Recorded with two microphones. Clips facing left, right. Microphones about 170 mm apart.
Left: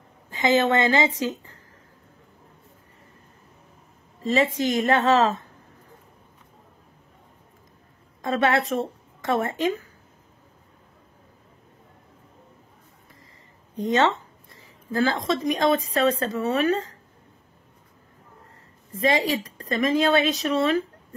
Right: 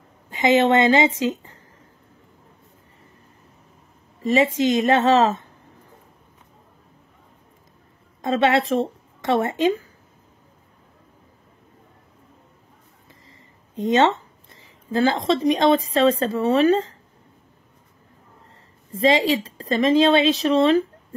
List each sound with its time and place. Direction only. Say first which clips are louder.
0.3 s a woman's voice: right 4 dB; 20° right (ahead or behind)
4.2 s speech: right 4 dB; 20° right (ahead or behind)
8.2 s speech: right 3 dB; 25° right (ahead or behind)
13.7 s speech: right 3 dB; 20° right (ahead or behind)
18.9 s speech: right 4 dB; 25° right (ahead or behind)